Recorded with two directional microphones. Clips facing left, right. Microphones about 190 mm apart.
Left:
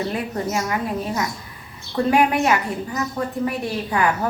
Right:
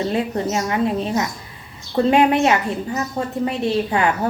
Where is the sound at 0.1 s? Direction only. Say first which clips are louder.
Right 3 dB; 25° right (ahead or behind).